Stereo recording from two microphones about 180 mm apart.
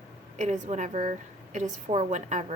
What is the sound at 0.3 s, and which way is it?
A woman's voice, 40° right (ahead or behind).